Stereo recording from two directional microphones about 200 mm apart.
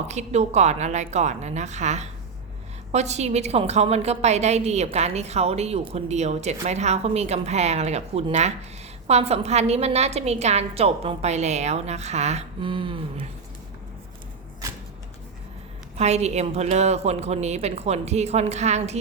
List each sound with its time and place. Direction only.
0.1 s a woman's voice: 35° right (ahead or behind)
16.0 s a woman's voice: 35° right (ahead or behind)